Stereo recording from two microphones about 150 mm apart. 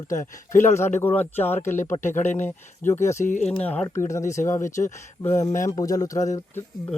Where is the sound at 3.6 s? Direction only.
10° left (ahead or behind).